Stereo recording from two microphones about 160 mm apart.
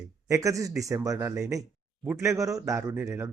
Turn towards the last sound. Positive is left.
turn(degrees=-15)  # may be behind; listen again after turning